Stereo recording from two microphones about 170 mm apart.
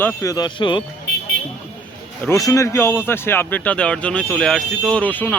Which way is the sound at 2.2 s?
20° left (ahead or behind).